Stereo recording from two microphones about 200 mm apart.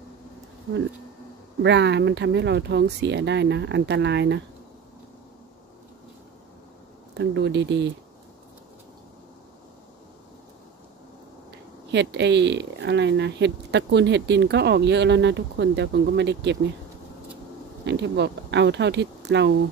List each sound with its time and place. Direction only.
1.6 s speech: 60° right (ahead or behind)
7.2 s speech: 60° right (ahead or behind)
11.9 s speech: 60° right (ahead or behind)
17.8 s speech: 60° right (ahead or behind)